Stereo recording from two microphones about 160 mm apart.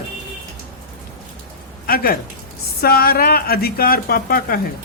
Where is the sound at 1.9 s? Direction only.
65° left (ahead or behind).